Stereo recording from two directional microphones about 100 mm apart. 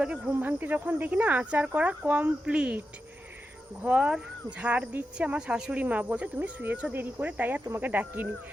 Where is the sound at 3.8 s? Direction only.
10° right (ahead or behind).